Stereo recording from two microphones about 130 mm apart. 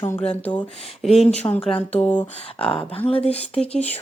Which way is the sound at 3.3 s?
10° left (ahead or behind).